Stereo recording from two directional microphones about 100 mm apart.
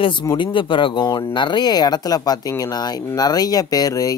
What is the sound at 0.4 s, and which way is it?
Speech, 55° left (ahead or behind).